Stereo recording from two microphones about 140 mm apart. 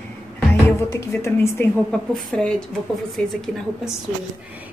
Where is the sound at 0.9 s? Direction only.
20° left (ahead or behind).